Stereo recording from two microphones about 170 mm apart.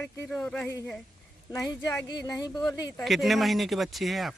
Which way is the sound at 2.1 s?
20° left (ahead or behind).